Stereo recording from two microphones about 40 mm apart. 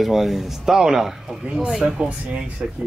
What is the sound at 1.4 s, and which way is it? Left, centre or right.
Speech, right.